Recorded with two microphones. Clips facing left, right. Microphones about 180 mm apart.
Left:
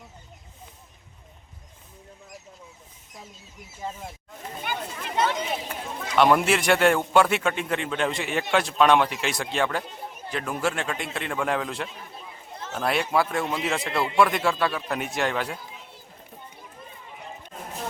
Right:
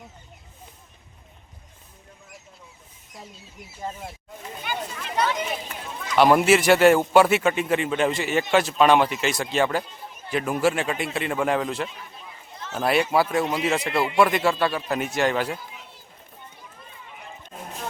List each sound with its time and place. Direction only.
3.8 s a man's voice: centre (ahead or behind)
4.7 s a sound: 55° left (ahead or behind)
6.1 s a man's voice: 5° right (ahead or behind)